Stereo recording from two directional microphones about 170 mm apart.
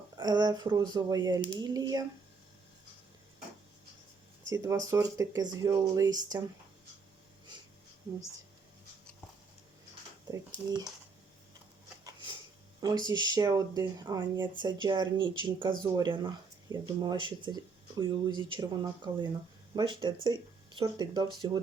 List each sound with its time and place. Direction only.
0.2 s speech: 25° right (ahead or behind)
4.4 s speech: 20° right (ahead or behind)
10.2 s speech: 20° right (ahead or behind)
13.1 s speech: 25° right (ahead or behind)